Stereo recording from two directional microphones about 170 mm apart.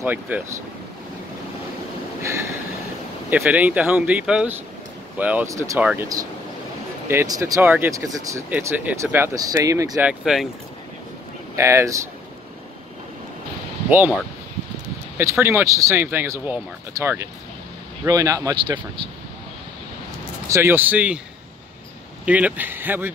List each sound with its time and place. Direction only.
0.0 s speech: 10° right (ahead or behind)
3.3 s speech: 10° right (ahead or behind)
7.1 s speech: 15° right (ahead or behind)
10.0 s speech: centre (ahead or behind)
11.5 s speech: 15° right (ahead or behind)
13.8 s speech: 10° right (ahead or behind)
20.4 s speech: 15° right (ahead or behind)
22.2 s speech: 10° right (ahead or behind)